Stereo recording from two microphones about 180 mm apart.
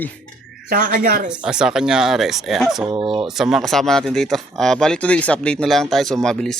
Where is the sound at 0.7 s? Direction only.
45° right (ahead or behind).